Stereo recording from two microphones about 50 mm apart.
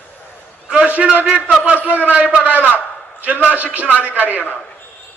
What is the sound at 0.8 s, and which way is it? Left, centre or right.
A man's voice, right.